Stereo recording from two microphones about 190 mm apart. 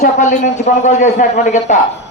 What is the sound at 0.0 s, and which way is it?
A man's voice, 40° left (ahead or behind).